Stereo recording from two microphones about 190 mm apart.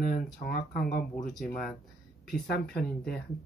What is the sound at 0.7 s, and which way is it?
Speech, 45° left (ahead or behind).